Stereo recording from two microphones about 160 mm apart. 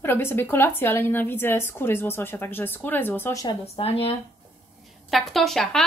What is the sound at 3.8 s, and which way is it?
Speech, 35° left (ahead or behind).